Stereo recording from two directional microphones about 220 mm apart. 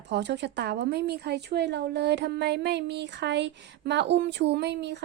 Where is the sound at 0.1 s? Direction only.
50° right (ahead or behind).